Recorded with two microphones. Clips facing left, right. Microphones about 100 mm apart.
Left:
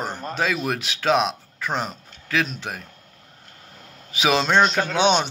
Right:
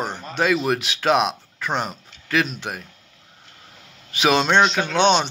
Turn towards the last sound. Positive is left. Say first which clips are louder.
# right 1 dB
turn(degrees=5)  # may be behind; listen again after turning